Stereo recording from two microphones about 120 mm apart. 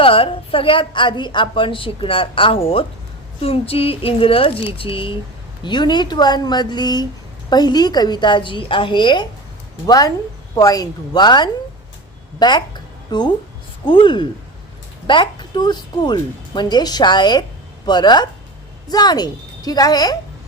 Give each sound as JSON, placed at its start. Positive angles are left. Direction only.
{"t": 0.0, "sound": "a woman's voice", "side_deg": 50}
{"t": 9.8, "sound": "a woman's voice", "side_deg": 30}